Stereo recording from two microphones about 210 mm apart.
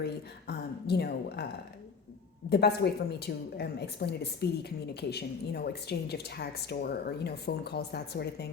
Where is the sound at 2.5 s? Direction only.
50° left (ahead or behind).